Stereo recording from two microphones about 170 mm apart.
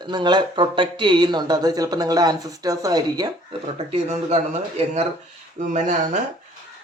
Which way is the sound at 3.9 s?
40° right (ahead or behind).